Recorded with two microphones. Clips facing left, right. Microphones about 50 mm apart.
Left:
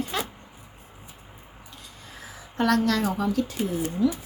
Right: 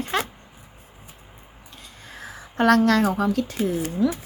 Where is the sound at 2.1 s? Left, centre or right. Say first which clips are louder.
Right 5 dB; right.